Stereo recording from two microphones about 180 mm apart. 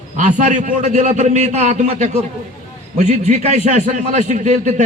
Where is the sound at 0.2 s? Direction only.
45° right (ahead or behind).